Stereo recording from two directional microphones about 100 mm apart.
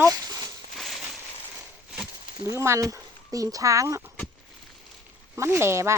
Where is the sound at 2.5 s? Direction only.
30° right (ahead or behind).